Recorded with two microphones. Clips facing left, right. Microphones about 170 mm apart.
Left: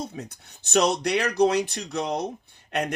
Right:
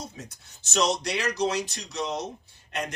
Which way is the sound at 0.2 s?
60° left (ahead or behind).